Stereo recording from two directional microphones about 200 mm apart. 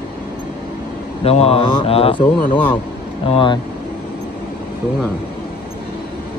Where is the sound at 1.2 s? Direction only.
30° left (ahead or behind).